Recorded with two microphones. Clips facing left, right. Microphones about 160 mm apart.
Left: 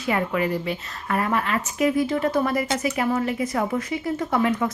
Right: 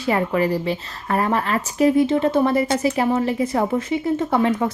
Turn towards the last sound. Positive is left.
turn(degrees=-30)  # may be behind; listen again after turning